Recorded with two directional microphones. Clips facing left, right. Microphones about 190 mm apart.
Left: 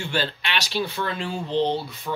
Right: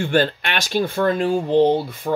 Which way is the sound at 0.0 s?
50° right (ahead or behind).